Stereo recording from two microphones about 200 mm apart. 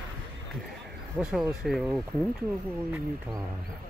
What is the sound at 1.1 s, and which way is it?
Speech, 5° right (ahead or behind).